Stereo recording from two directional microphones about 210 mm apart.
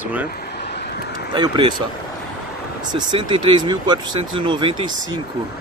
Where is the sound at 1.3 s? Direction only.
20° right (ahead or behind).